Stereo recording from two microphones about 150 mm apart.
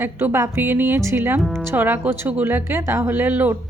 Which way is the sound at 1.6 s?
15° right (ahead or behind).